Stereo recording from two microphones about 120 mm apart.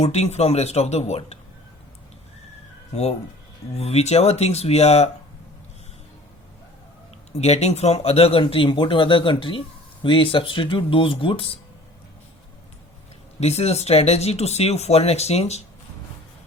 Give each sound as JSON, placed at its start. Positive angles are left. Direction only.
{"t": 0.0, "sound": "speech", "side_deg": 60}
{"t": 2.9, "sound": "speech", "side_deg": 65}
{"t": 7.3, "sound": "speech", "side_deg": 65}
{"t": 13.4, "sound": "speech", "side_deg": 60}